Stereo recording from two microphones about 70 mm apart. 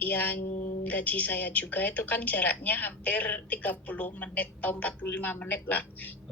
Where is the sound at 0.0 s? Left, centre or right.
Left.